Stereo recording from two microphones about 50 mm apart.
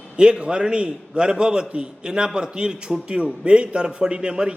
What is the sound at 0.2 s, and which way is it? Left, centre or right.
A man's voice, centre.